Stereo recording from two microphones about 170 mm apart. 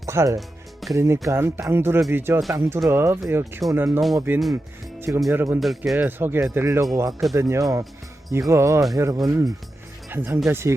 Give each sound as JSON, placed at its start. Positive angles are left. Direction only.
{"t": 0.0, "sound": "speech", "side_deg": -20}
{"t": 0.3, "sound": "music", "side_deg": 0}
{"t": 0.9, "sound": "speech", "side_deg": -15}
{"t": 5.5, "sound": "speech", "side_deg": 0}